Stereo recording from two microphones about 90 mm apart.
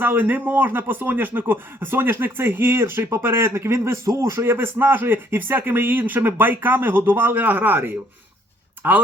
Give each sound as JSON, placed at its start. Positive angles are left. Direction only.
{"t": 0.0, "sound": "speech", "side_deg": -20}